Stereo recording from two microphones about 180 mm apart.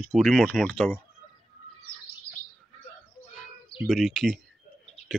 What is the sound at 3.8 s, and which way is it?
Speech, centre (ahead or behind).